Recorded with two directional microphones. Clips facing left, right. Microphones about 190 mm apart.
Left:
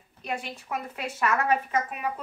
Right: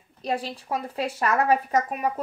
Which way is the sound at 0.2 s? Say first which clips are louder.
Right 5 dB; 35° right (ahead or behind).